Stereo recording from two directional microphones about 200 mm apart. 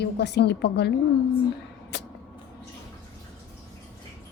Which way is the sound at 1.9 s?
60° left (ahead or behind).